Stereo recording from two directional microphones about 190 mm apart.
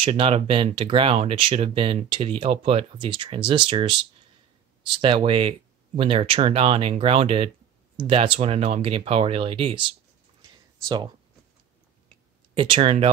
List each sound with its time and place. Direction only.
0.0 s speech: 30° right (ahead or behind)
10.5 s a sound: 20° right (ahead or behind)
12.5 s speech: 25° right (ahead or behind)